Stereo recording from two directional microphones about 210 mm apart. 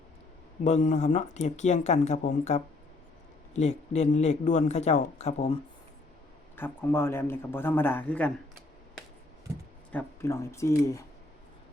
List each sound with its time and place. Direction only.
0.6 s speech: 35° left (ahead or behind)
6.6 s a man's voice: 10° left (ahead or behind)
9.9 s a man's voice: 10° left (ahead or behind)